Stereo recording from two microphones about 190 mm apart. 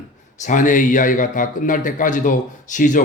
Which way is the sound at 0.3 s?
40° left (ahead or behind).